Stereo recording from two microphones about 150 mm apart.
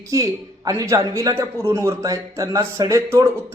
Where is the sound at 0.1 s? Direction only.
20° right (ahead or behind).